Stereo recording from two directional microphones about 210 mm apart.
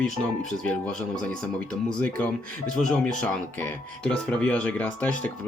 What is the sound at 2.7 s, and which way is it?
Speech, 5° left (ahead or behind).